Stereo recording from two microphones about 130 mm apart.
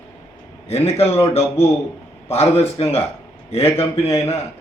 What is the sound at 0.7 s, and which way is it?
Speech, 50° left (ahead or behind).